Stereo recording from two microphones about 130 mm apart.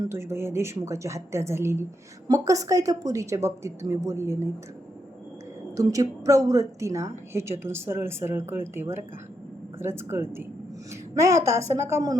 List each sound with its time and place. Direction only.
0.0 s speech: 20° right (ahead or behind)
5.7 s speech: 25° right (ahead or behind)